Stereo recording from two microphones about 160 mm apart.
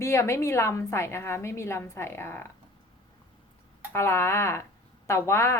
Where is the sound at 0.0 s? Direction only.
15° left (ahead or behind).